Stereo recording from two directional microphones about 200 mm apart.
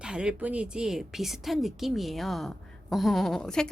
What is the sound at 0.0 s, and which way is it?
Speech, 5° right (ahead or behind).